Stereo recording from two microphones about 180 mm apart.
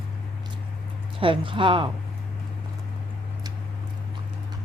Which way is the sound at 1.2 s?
30° right (ahead or behind).